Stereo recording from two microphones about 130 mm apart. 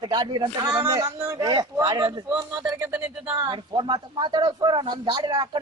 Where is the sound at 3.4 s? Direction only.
40° right (ahead or behind).